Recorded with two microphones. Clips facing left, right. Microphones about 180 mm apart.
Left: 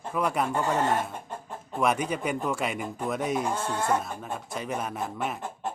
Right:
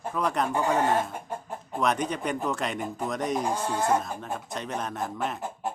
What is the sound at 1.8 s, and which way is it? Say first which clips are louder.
Speech: left 1 dB; 5° left (ahead or behind).